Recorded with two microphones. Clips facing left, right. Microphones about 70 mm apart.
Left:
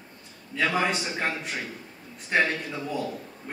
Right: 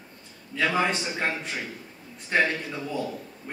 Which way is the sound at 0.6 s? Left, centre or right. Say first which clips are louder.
Right 1 dB; centre.